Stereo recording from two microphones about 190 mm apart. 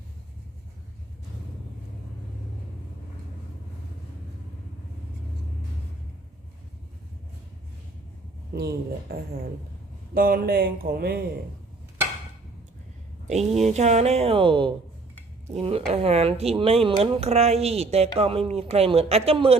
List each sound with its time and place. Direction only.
8.5 s speech: 55° right (ahead or behind)
13.2 s speech: 35° right (ahead or behind)
15.9 s speech: 35° right (ahead or behind)